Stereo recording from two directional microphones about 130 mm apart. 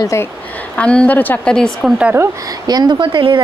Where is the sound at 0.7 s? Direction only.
10° left (ahead or behind).